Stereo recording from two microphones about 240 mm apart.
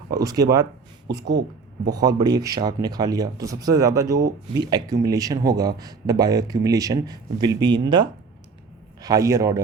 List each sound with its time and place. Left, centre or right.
0.1 s speech: centre
1.2 s speech: right
1.9 s a man's voice: centre